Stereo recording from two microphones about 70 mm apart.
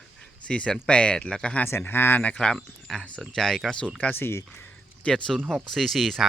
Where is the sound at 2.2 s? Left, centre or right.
Centre.